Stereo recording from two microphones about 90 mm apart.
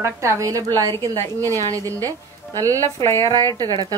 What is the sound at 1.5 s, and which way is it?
Speech, 40° right (ahead or behind).